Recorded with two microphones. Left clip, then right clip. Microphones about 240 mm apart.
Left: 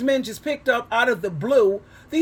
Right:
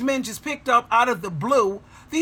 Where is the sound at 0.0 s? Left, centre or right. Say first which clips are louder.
Left 3 dB; right.